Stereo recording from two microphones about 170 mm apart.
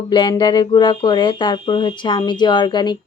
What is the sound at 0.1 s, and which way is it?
Speech, 25° left (ahead or behind).